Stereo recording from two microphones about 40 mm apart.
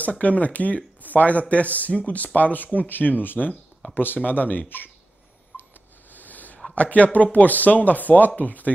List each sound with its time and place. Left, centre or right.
0.0 s speech: left
5.5 s a sound: left
6.7 s speech: left